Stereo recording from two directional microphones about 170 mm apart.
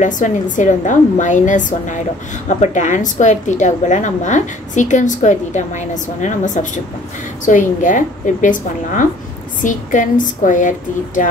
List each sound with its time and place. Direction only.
0.0 s a woman's voice: 45° left (ahead or behind)